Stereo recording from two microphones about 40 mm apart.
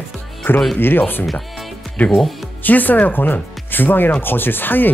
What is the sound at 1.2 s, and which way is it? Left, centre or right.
Speech, centre.